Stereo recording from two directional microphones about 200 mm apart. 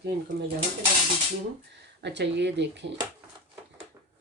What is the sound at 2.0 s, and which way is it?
Speech, 60° right (ahead or behind).